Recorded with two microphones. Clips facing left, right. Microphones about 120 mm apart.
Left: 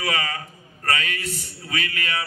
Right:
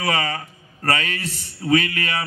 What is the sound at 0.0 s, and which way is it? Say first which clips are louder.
A man's voice: right 4 dB; 35° right (ahead or behind).